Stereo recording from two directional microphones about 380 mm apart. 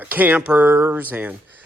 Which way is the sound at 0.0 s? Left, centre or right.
Centre.